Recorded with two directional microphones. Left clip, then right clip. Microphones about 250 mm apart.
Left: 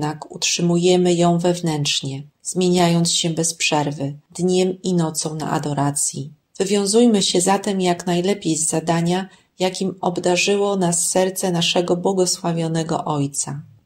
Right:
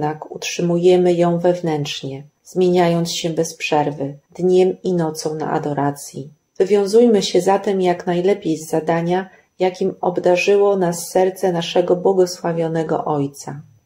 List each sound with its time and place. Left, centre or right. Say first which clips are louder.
0.0 s speech: right 1 dB; left